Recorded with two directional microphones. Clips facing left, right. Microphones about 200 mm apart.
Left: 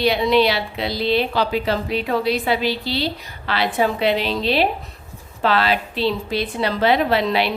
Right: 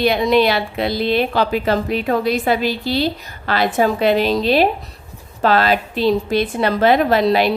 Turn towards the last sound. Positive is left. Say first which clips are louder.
# right 4 dB
turn(degrees=-45)  # may be behind; listen again after turning